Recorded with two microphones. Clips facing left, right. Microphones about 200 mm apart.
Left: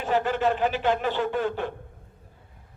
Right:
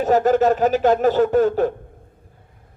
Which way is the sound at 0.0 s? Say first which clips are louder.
Right 8 dB; 40° right (ahead or behind).